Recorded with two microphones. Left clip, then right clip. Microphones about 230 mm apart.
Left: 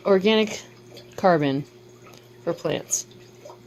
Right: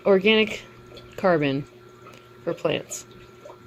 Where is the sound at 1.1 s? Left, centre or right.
Left.